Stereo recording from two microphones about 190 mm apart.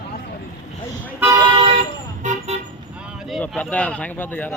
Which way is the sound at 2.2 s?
40° right (ahead or behind).